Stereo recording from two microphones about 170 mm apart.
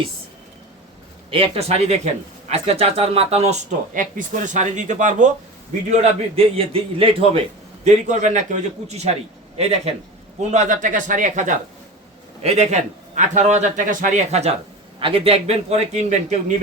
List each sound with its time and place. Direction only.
1.3 s a man's voice: 35° right (ahead or behind)
5.9 s speech: 35° right (ahead or behind)
7.9 s a man's voice: 45° right (ahead or behind)